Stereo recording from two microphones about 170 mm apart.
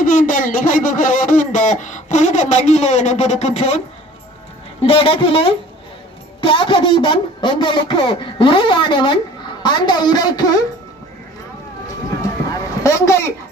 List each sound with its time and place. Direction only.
0.0 s speech: 50° left (ahead or behind)
4.9 s speech: 30° left (ahead or behind)
12.8 s speech: 15° left (ahead or behind)